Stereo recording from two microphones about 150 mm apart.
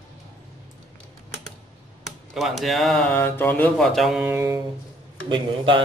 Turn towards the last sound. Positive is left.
turn(degrees=-35)  # may be behind; listen again after turning